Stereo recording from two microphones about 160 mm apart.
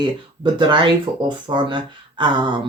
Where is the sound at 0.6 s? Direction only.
30° right (ahead or behind).